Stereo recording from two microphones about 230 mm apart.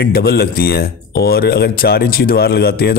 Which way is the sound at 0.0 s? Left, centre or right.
Left.